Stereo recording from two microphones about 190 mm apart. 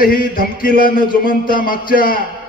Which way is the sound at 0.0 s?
50° left (ahead or behind).